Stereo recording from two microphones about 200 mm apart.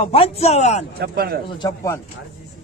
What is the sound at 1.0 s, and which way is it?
Speech, 50° right (ahead or behind).